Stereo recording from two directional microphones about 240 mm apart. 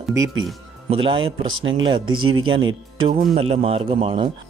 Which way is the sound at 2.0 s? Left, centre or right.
Right.